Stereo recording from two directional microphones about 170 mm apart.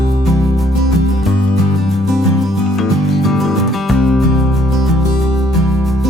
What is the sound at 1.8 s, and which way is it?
Music, centre (ahead or behind).